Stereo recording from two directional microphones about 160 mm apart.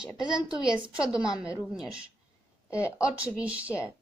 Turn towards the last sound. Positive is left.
turn(degrees=-5)  # may be behind; listen again after turning